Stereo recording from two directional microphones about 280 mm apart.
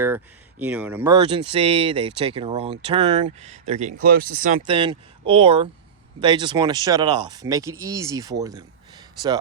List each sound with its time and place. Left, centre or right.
0.6 s speech: centre